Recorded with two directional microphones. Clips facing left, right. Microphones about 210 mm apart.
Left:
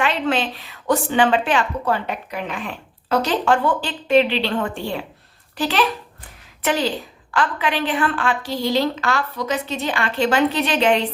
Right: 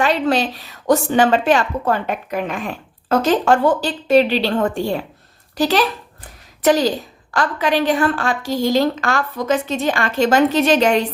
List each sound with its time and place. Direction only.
0.0 s a woman's voice: 40° right (ahead or behind)